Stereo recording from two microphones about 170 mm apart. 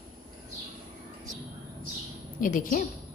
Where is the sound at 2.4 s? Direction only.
50° left (ahead or behind).